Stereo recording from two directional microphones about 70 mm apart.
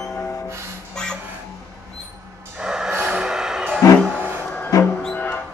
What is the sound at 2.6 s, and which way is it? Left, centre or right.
Music, centre.